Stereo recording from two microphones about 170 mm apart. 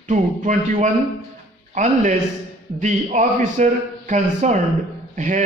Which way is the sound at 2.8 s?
45° right (ahead or behind).